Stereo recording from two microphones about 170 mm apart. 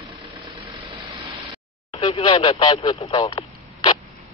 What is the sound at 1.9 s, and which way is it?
A man's voice, 30° left (ahead or behind).